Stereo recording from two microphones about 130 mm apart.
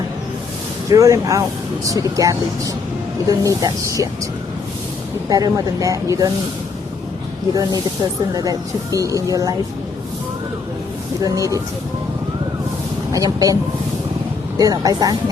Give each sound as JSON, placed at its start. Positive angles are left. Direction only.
{"t": 0.9, "sound": "speech", "side_deg": -25}
{"t": 5.3, "sound": "speech", "side_deg": -25}
{"t": 7.5, "sound": "speech", "side_deg": -30}
{"t": 11.2, "sound": "speech", "side_deg": -25}
{"t": 13.1, "sound": "speech", "side_deg": -25}
{"t": 14.6, "sound": "speech", "side_deg": -30}